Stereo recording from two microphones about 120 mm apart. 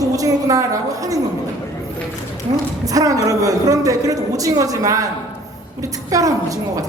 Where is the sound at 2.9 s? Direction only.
30° right (ahead or behind).